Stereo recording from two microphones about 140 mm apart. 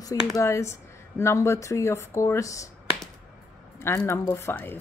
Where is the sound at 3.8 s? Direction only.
20° left (ahead or behind).